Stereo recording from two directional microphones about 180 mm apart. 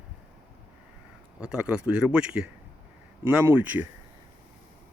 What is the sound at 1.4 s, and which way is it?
Speech, 5° right (ahead or behind).